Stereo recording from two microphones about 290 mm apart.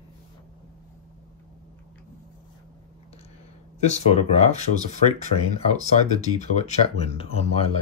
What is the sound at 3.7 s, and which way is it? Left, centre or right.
Speech, left.